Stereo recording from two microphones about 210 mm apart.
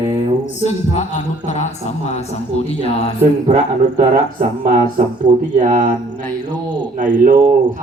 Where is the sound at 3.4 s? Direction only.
35° right (ahead or behind).